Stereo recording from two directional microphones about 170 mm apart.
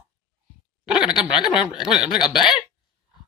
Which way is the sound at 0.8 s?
5° right (ahead or behind).